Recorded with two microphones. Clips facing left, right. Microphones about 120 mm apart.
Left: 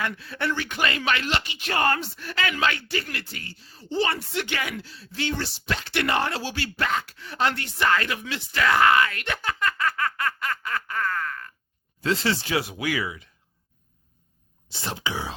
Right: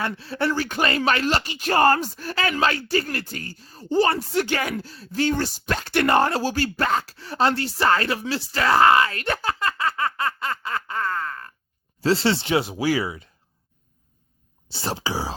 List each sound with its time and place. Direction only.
0.0 s speech: 30° right (ahead or behind)
14.7 s speech: 30° right (ahead or behind)